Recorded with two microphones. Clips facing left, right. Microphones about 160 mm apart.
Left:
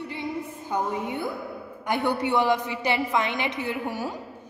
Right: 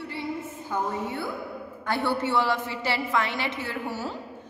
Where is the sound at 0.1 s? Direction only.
20° left (ahead or behind).